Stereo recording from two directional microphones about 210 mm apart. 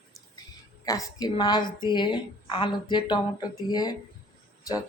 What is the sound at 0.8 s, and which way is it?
Speech, 15° left (ahead or behind).